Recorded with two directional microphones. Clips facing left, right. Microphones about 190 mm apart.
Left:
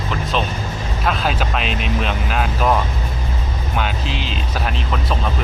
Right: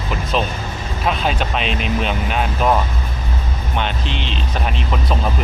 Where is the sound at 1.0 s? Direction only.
Centre (ahead or behind).